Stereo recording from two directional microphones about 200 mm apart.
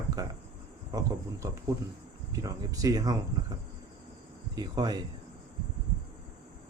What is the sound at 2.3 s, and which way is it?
A man's voice, 15° right (ahead or behind).